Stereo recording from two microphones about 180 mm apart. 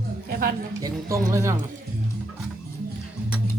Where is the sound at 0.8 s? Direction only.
15° right (ahead or behind).